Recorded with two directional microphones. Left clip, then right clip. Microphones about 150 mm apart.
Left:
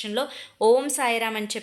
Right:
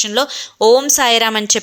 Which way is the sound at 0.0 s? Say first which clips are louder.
Right 11 dB; 35° right (ahead or behind).